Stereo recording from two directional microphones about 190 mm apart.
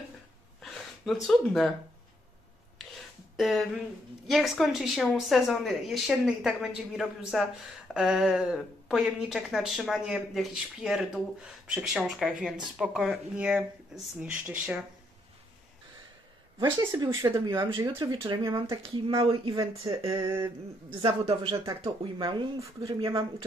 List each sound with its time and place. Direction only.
0.6 s a sound: centre (ahead or behind)
1.2 s speech: centre (ahead or behind)
3.3 s speech: centre (ahead or behind)
16.5 s speech: 25° right (ahead or behind)
18.8 s speech: 30° right (ahead or behind)
20.1 s speech: 20° right (ahead or behind)